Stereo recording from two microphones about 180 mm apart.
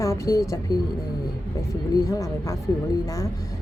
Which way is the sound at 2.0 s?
15° left (ahead or behind).